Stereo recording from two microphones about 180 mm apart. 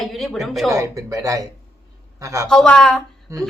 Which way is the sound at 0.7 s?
15° right (ahead or behind).